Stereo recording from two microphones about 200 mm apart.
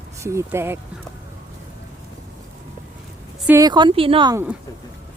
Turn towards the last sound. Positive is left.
turn(degrees=-25)  # may be behind; listen again after turning